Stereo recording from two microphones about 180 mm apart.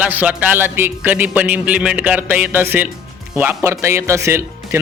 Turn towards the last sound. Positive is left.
turn(degrees=-15)  # may be behind; listen again after turning